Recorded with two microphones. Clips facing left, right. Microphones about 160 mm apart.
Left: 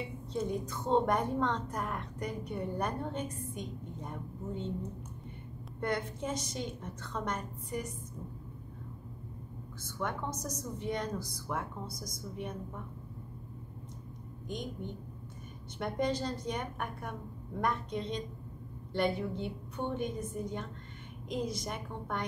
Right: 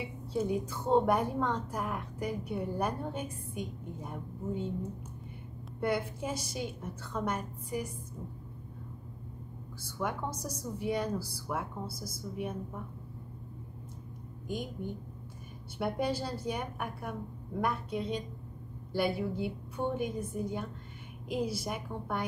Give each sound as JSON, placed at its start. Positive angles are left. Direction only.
{"t": 0.3, "sound": "a woman's voice", "side_deg": -10}
{"t": 5.8, "sound": "a woman's voice", "side_deg": -10}
{"t": 9.8, "sound": "a woman's voice", "side_deg": -10}
{"t": 14.5, "sound": "a woman's voice", "side_deg": -5}
{"t": 15.8, "sound": "a woman's voice", "side_deg": -10}